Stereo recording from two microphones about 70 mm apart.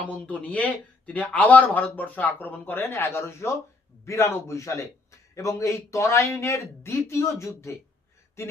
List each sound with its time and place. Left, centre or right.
0.0 s speech: left
2.9 s speech: left